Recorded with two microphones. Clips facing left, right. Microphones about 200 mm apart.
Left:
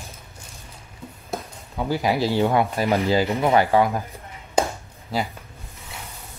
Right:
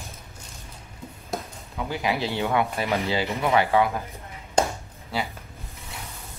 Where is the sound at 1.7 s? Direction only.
35° left (ahead or behind).